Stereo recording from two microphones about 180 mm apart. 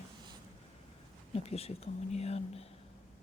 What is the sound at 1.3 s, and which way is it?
Speech, 35° left (ahead or behind).